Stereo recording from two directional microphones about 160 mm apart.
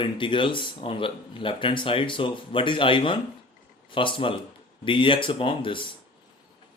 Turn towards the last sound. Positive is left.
turn(degrees=30)  # may be behind; listen again after turning